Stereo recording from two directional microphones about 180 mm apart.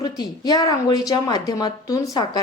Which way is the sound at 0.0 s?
20° left (ahead or behind).